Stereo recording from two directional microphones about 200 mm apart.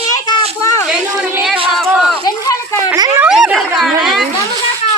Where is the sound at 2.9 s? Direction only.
15° right (ahead or behind).